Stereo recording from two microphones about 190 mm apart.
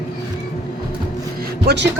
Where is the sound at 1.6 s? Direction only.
65° right (ahead or behind).